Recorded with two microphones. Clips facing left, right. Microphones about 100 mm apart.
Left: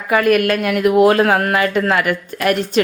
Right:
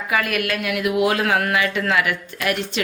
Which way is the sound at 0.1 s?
45° left (ahead or behind).